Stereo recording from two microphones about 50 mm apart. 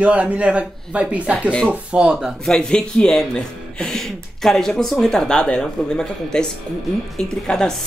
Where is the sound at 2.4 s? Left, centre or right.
Centre.